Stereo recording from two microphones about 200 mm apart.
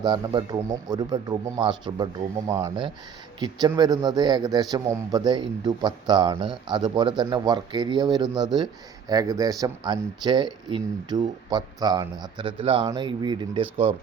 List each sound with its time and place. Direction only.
0.0 s a man's voice: 20° right (ahead or behind)